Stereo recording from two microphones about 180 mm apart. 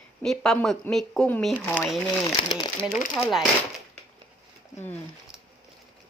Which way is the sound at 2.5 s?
25° left (ahead or behind).